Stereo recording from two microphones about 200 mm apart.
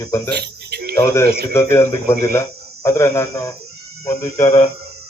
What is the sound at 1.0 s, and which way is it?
Speech, 15° left (ahead or behind).